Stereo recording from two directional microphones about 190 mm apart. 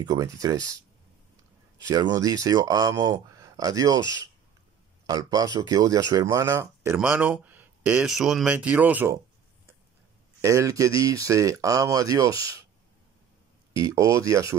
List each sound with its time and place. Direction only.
0.0 s speech: 20° right (ahead or behind)
1.9 s speech: 20° right (ahead or behind)
5.0 s speech: 20° right (ahead or behind)
10.4 s speech: 15° right (ahead or behind)
13.7 s speech: 15° right (ahead or behind)